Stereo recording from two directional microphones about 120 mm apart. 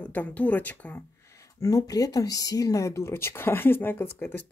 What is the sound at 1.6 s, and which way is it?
Speech, 30° left (ahead or behind).